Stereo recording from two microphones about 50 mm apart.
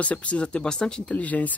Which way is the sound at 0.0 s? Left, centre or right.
Left.